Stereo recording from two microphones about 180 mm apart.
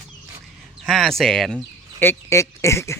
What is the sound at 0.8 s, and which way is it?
Speech, centre (ahead or behind).